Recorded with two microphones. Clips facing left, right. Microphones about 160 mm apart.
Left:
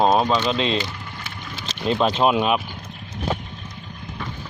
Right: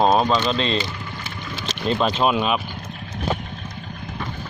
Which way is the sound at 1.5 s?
55° right (ahead or behind).